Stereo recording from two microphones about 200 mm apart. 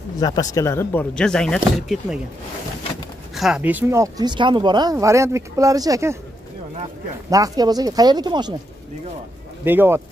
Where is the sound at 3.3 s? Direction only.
Centre (ahead or behind).